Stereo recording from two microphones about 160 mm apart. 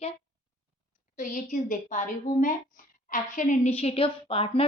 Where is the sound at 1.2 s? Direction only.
50° left (ahead or behind).